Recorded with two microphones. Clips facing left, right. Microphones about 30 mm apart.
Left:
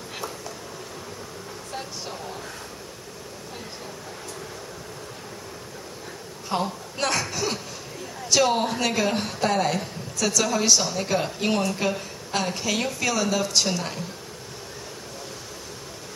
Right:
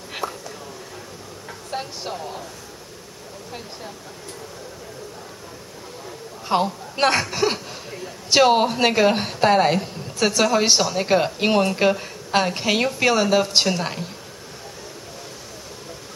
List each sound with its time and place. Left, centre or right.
0.2 s a sound: right
1.7 s speech: right
6.5 s a woman's voice: right